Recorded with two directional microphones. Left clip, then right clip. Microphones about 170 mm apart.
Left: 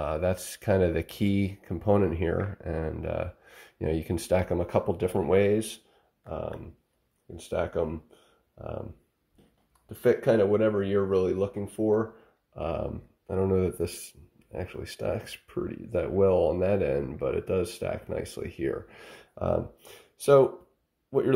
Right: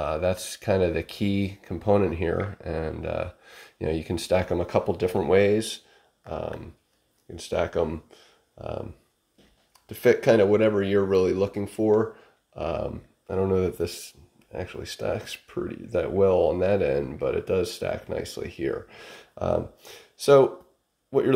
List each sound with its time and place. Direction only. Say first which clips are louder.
0.0 s speech: right 3 dB; 5° left (ahead or behind)
9.8 s speech: right 4 dB; 15° right (ahead or behind)
12.5 s speech: right 3 dB; centre (ahead or behind)